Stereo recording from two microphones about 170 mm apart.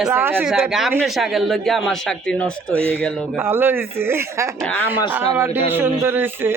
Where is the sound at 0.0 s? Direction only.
15° right (ahead or behind); by 2.7 s 5° left (ahead or behind).